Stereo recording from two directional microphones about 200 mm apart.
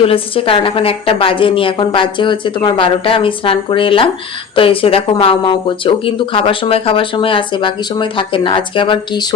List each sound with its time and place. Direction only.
0.0 s speech: 25° left (ahead or behind)